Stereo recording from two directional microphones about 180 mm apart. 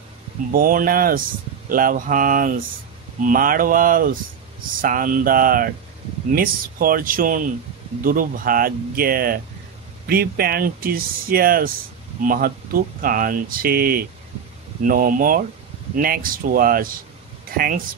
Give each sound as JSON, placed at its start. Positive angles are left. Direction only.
{"t": 0.5, "sound": "speech", "side_deg": -50}